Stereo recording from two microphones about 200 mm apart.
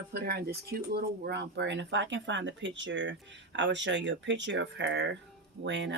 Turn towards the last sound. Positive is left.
turn(degrees=-60)  # may be behind; listen again after turning